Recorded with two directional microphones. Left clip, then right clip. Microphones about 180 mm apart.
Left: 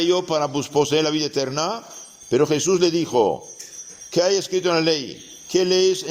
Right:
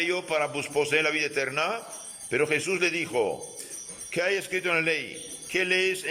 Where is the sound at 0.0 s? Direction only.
25° left (ahead or behind).